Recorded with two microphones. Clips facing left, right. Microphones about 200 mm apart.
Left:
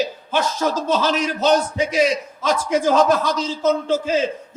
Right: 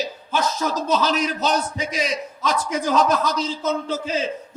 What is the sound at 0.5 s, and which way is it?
Speech, 40° left (ahead or behind).